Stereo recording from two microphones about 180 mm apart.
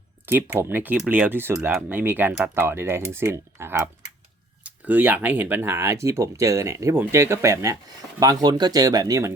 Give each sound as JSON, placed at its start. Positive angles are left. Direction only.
{"t": 0.3, "sound": "speech", "side_deg": -10}